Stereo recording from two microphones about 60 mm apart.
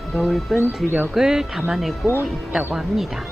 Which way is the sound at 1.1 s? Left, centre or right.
Centre.